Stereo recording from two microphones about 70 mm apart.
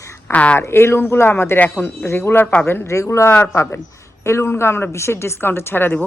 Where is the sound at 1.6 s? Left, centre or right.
Left.